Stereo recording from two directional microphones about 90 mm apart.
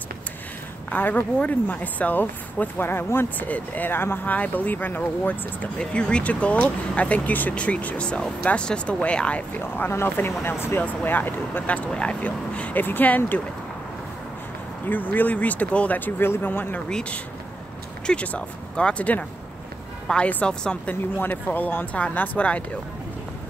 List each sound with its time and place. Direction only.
0.8 s speech: 20° left (ahead or behind)
9.6 s speech: 25° left (ahead or behind)
14.9 s speech: 20° left (ahead or behind)
18.0 s speech: 15° left (ahead or behind)